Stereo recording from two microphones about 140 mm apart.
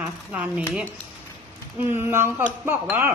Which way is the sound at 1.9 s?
15° right (ahead or behind).